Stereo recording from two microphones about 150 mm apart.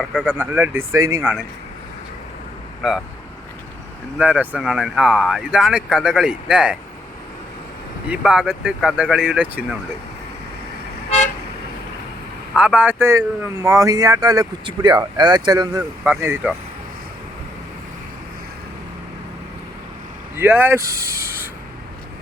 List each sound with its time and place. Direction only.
0.0 s speech: 5° left (ahead or behind)
0.3 s speech: 10° right (ahead or behind)
2.8 s speech: centre (ahead or behind)
4.2 s speech: 10° right (ahead or behind)
8.0 s speech: 5° right (ahead or behind)
12.5 s speech: 10° right (ahead or behind); by 15.8 s 25° right (ahead or behind)
16.0 s speech: 10° right (ahead or behind)
20.4 s speech: 15° right (ahead or behind)